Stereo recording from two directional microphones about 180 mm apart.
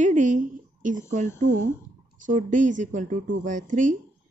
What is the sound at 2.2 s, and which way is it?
A woman's voice, 45° right (ahead or behind).